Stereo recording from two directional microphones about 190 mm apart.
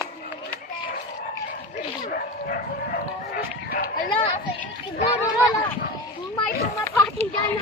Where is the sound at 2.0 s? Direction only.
50° left (ahead or behind).